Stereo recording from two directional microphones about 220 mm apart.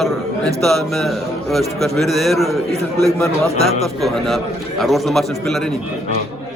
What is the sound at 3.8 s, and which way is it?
A man's voice, centre (ahead or behind).